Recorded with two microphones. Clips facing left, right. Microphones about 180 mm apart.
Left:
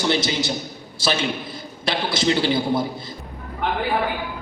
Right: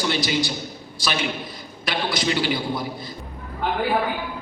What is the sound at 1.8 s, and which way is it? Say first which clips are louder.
A man's voice: left 3 dB; 25° left (ahead or behind).